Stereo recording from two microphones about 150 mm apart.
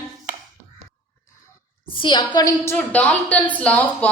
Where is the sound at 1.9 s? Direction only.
30° left (ahead or behind).